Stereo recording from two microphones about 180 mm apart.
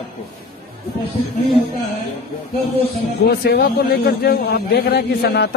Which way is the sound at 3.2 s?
60° left (ahead or behind).